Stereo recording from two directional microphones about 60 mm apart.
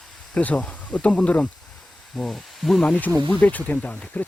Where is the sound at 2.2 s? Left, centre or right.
Centre.